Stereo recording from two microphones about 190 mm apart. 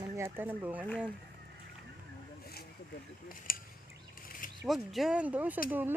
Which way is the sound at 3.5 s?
50° left (ahead or behind).